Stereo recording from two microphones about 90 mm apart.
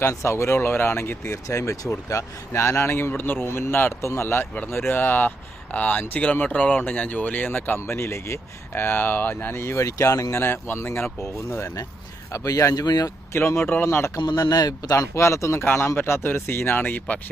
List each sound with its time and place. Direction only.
0.0 s speech: 30° left (ahead or behind)
10.4 s speech: 25° left (ahead or behind); by 13.1 s 45° left (ahead or behind)
13.3 s speech: 30° left (ahead or behind)
14.2 s speech: 50° left (ahead or behind); by 17.2 s 20° left (ahead or behind)